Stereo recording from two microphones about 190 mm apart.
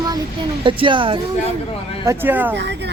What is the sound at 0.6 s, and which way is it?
Speech, 25° right (ahead or behind).